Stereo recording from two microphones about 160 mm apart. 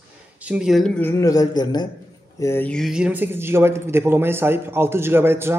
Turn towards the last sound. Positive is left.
turn(degrees=-15)  # may be behind; listen again after turning